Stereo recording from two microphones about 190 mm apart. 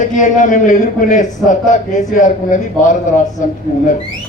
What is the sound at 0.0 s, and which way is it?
A man's voice, 40° left (ahead or behind).